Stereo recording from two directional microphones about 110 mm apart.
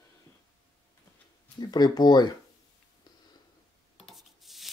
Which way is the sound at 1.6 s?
40° left (ahead or behind).